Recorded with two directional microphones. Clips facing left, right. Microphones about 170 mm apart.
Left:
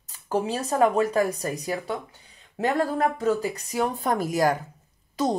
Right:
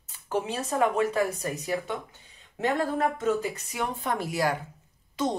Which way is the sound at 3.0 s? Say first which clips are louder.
Left 3 dB; 30° left (ahead or behind).